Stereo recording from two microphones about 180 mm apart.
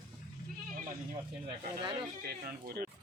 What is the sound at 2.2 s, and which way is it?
Speech, 60° right (ahead or behind).